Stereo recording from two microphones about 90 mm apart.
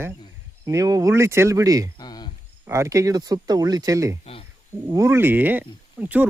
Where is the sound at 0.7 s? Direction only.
40° right (ahead or behind).